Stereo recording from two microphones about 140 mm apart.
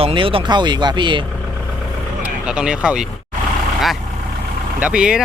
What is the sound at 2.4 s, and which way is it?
Speech, 5° right (ahead or behind).